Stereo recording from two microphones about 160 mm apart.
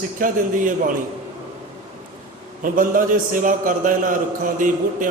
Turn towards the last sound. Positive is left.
turn(degrees=-55)  # may be behind; listen again after turning